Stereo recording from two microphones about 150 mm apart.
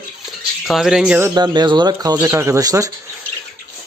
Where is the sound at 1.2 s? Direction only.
25° right (ahead or behind).